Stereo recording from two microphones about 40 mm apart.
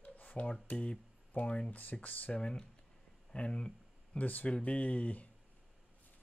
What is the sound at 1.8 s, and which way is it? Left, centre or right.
Speech, left.